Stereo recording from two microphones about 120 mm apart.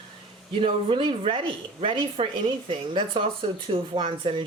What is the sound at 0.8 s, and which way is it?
Speech, 45° right (ahead or behind).